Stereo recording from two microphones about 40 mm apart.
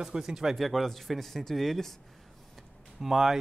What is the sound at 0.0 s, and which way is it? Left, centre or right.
Speech, centre.